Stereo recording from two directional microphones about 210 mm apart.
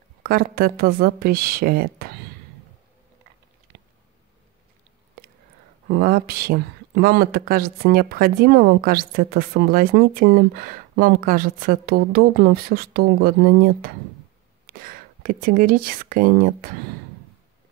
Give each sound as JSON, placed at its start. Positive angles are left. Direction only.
{"t": 0.2, "sound": "speech", "side_deg": -45}
{"t": 5.2, "sound": "whispering", "side_deg": -45}
{"t": 5.9, "sound": "speech", "side_deg": -45}